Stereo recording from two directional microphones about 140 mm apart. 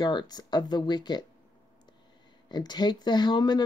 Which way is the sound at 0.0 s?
30° left (ahead or behind).